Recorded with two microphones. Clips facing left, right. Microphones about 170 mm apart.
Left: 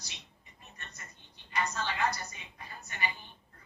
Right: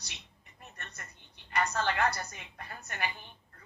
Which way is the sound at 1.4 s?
65° right (ahead or behind).